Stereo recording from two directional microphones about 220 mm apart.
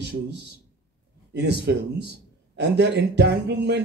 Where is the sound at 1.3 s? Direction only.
50° right (ahead or behind).